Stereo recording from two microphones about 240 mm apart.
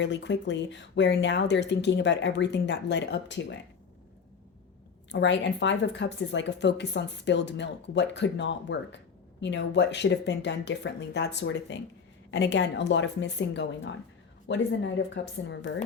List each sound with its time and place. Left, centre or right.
0.0 s speech: left
5.1 s speech: left